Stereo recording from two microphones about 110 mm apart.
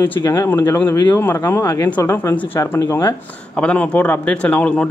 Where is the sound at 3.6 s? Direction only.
10° left (ahead or behind).